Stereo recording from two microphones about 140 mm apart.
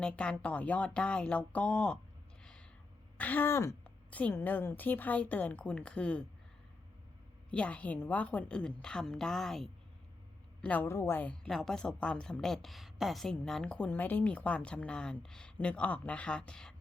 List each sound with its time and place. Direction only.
0.0 s a woman's voice: 5° left (ahead or behind)
2.4 s a sound: 5° left (ahead or behind)
3.2 s a woman's voice: 10° left (ahead or behind)
7.5 s a woman's voice: 10° left (ahead or behind)
10.6 s a woman's voice: 10° left (ahead or behind)